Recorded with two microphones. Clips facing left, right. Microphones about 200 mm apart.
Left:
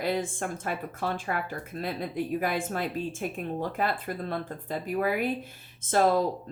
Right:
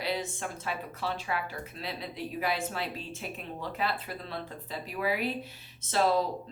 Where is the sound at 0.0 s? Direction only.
50° left (ahead or behind).